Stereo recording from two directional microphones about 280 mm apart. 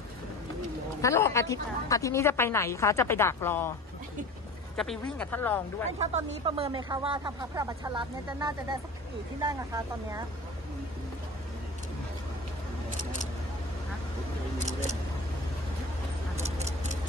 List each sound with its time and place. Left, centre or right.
1.0 s a woman's voice: centre
4.7 s speech: centre
5.9 s speech: right
16.6 s clock: right